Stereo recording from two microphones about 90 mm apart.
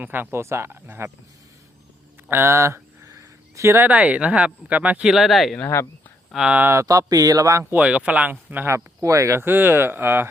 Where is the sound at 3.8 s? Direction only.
15° right (ahead or behind); by 5.5 s centre (ahead or behind).